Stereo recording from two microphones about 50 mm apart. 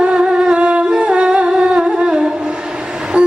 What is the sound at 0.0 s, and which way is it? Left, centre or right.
Humming, centre.